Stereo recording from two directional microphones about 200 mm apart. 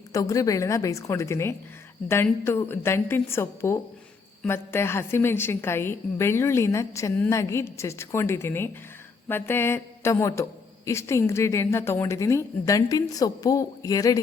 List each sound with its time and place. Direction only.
0.1 s a woman's voice: 15° left (ahead or behind)